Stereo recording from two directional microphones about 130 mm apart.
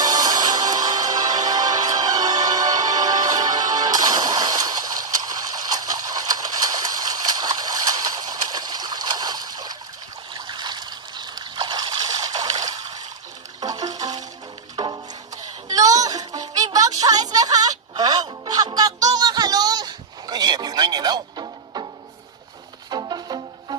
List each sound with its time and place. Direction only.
0.0 s music: 30° right (ahead or behind)
5.5 s a sound: 30° right (ahead or behind)
10.3 s trickle: 35° right (ahead or behind)
13.6 s music: 30° right (ahead or behind)
15.7 s a sound: 25° right (ahead or behind)
22.9 s music: 35° right (ahead or behind)